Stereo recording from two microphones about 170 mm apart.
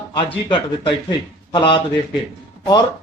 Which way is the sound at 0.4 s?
30° left (ahead or behind).